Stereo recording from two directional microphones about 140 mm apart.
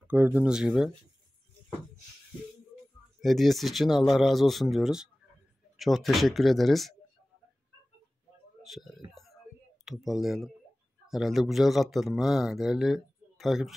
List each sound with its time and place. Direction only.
0.0 s speech: 15° right (ahead or behind)
3.2 s a man's voice: centre (ahead or behind)
8.6 s speech: centre (ahead or behind)
9.1 s a sound: centre (ahead or behind)
9.8 s a man's voice: 5° right (ahead or behind)